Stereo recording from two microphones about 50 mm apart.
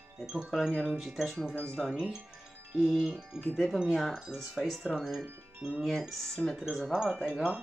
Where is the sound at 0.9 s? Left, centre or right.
Centre.